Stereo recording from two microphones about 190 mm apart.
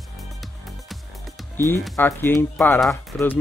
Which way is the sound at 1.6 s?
15° left (ahead or behind).